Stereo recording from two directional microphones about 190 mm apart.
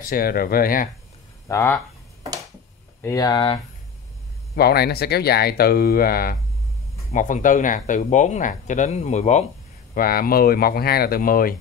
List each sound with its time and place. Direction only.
0.0 s speech: 50° left (ahead or behind)
1.5 s speech: 10° left (ahead or behind)
3.0 s speech: 15° left (ahead or behind)
4.6 s speech: 55° left (ahead or behind)
7.1 s speech: 40° left (ahead or behind)
9.9 s speech: 50° left (ahead or behind)